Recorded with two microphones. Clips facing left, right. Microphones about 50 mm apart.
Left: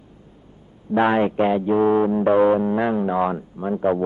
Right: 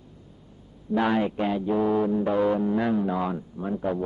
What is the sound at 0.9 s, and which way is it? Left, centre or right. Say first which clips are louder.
A man's voice: left 6 dB; left.